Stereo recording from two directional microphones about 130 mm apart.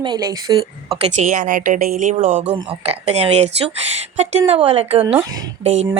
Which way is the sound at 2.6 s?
50° right (ahead or behind).